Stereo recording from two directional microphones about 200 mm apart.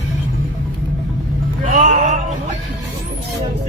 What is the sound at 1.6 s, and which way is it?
Music, 40° right (ahead or behind).